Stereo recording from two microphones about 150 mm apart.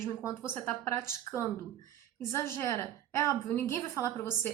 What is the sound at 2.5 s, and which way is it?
A woman's voice, 15° left (ahead or behind).